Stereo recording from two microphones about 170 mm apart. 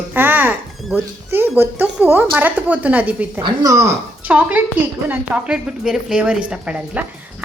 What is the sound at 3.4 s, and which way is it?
A woman's voice, 25° right (ahead or behind).